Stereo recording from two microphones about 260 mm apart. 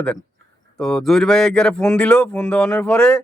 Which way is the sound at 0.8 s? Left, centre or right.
Centre.